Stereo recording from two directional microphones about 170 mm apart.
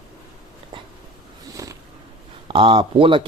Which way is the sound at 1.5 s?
20° right (ahead or behind).